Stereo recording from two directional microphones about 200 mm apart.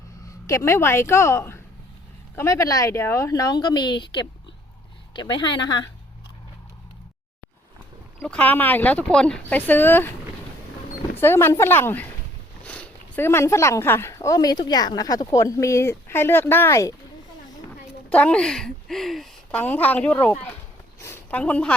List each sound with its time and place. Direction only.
0.4 s speech: 15° left (ahead or behind)
8.2 s speech: 5° left (ahead or behind)
11.2 s speech: 10° left (ahead or behind)
18.1 s a woman's voice: 5° left (ahead or behind)